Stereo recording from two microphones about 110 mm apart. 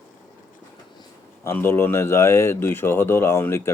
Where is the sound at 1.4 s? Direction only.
20° left (ahead or behind).